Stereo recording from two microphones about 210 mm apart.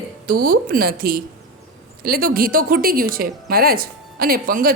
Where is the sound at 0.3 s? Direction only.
45° right (ahead or behind).